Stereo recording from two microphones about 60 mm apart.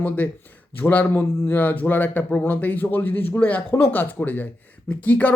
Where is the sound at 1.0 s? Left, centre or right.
Left.